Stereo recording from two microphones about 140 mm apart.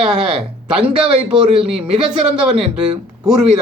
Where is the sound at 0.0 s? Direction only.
5° right (ahead or behind).